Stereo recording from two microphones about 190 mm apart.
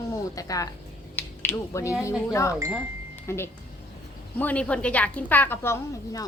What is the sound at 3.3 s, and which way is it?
A woman's voice, 15° left (ahead or behind).